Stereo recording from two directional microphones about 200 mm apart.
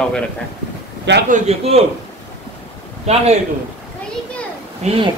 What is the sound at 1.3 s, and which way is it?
Speech, 30° right (ahead or behind).